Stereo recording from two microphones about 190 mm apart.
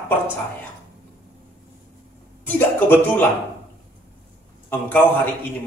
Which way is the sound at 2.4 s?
10° left (ahead or behind).